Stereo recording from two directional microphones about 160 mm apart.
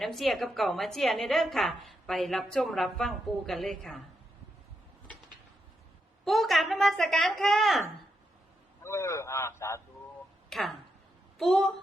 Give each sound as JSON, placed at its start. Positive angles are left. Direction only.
{"t": 0.0, "sound": "a woman's voice", "side_deg": 0}
{"t": 6.2, "sound": "a woman's voice", "side_deg": 0}
{"t": 8.8, "sound": "a man's voice", "side_deg": 15}
{"t": 10.5, "sound": "a woman's voice", "side_deg": 0}